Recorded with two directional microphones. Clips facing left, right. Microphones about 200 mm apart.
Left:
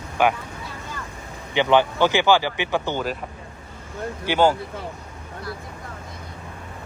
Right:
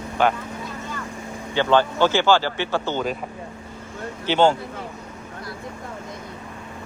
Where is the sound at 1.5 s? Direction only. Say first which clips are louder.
Left 1 dB; 15° left (ahead or behind).